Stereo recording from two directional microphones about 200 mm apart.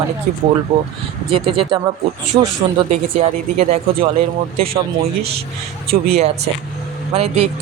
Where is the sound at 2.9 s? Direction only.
35° right (ahead or behind).